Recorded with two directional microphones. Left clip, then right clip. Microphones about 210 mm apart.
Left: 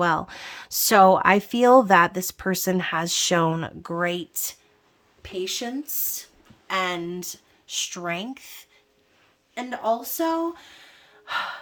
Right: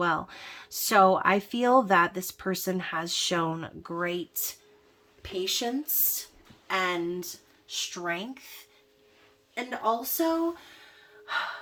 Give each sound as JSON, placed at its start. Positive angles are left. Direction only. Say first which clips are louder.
{"t": 0.0, "sound": "speech", "louder": "left 5 dB", "side_deg": 30}
{"t": 6.7, "sound": "speech", "louder": "left 2 dB", "side_deg": 35}
{"t": 9.6, "sound": "speech", "louder": "left 3 dB", "side_deg": 30}